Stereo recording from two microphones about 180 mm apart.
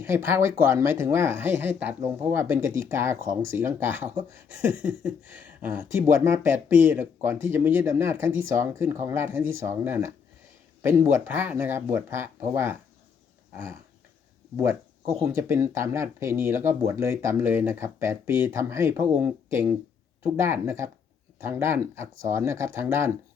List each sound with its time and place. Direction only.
0.0 s speech: 15° right (ahead or behind)
14.5 s speech: 15° right (ahead or behind)